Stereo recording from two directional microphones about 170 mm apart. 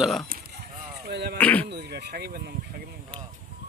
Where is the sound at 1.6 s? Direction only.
70° right (ahead or behind).